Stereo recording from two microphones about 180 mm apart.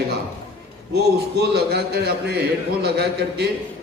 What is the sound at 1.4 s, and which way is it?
A man's voice, 65° right (ahead or behind).